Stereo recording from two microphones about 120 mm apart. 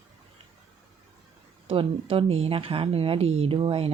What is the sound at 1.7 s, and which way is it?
Speech, 50° right (ahead or behind).